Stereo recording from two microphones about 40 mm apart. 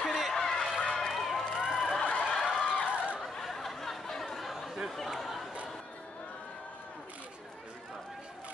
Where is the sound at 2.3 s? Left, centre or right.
Centre.